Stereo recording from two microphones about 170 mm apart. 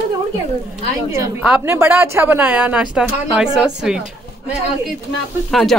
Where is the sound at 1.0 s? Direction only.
20° right (ahead or behind).